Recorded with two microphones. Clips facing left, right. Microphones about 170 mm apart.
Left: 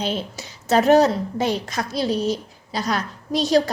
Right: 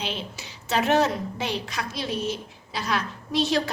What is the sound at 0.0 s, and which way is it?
A woman's voice, 40° left (ahead or behind).